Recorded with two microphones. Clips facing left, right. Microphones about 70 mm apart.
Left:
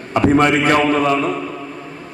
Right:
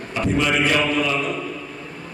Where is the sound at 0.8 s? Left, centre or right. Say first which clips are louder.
Left 6 dB; left.